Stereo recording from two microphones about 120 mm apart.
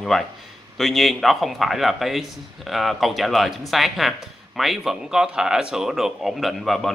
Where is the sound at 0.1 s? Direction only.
Centre (ahead or behind).